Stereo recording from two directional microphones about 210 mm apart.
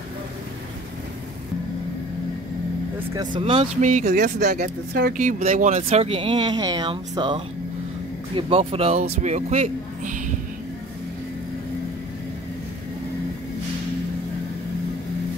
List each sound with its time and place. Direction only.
3.1 s speech: 20° right (ahead or behind)